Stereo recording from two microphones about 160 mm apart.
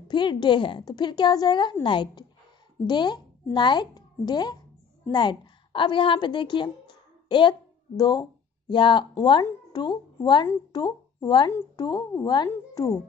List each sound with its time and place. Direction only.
0.1 s a woman's voice: 30° left (ahead or behind)